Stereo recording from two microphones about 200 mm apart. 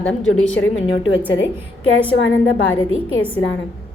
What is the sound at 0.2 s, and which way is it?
Speech, 80° left.